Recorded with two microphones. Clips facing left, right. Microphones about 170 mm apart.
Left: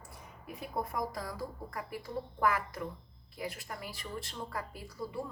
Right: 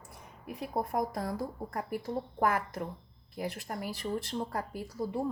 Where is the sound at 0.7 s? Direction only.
55° right (ahead or behind).